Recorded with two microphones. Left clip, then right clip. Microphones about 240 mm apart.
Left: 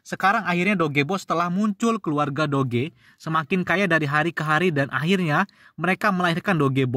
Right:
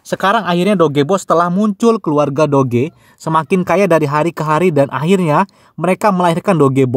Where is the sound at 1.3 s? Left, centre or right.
Left.